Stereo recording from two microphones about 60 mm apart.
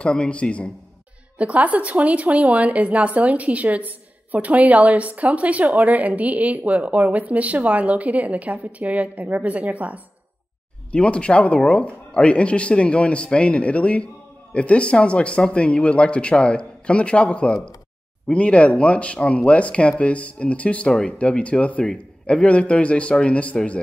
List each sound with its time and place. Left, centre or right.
0.0 s speech: centre
1.4 s a woman's voice: right
10.9 s speech: centre